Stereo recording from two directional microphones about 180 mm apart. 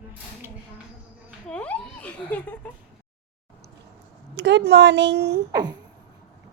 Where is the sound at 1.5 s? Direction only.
5° left (ahead or behind).